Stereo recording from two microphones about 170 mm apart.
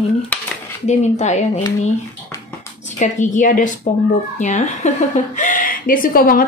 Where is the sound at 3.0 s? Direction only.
45° left (ahead or behind).